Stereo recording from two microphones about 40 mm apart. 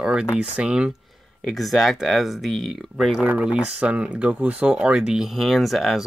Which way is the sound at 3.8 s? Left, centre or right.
Right.